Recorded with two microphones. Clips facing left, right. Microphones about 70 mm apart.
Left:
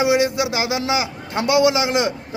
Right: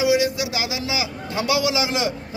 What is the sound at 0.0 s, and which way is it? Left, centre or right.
A man's voice, left.